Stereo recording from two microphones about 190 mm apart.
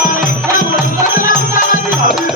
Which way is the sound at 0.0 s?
45° left (ahead or behind).